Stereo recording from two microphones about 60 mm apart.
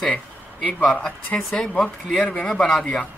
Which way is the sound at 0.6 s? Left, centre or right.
Left.